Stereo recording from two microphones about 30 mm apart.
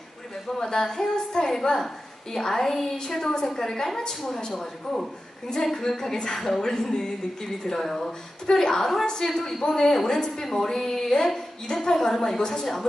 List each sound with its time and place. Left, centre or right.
0.5 s a woman's voice: centre
4.5 s a woman's voice: centre